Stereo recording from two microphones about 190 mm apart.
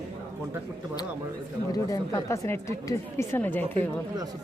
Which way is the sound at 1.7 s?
20° left (ahead or behind).